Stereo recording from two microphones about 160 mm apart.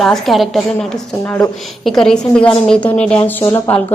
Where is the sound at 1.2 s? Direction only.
15° left (ahead or behind).